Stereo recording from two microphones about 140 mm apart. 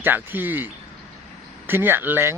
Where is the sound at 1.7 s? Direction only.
15° right (ahead or behind).